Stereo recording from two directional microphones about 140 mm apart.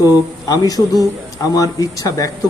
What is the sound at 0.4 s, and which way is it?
Speech, 30° left (ahead or behind).